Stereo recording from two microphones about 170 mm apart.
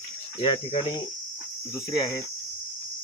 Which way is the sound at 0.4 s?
30° left (ahead or behind).